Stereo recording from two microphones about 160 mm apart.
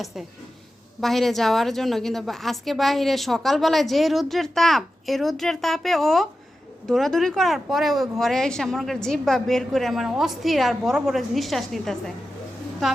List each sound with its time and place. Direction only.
0.0 s a woman's voice: centre (ahead or behind)